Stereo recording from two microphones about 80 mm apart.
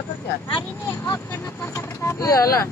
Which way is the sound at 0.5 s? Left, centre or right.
Left.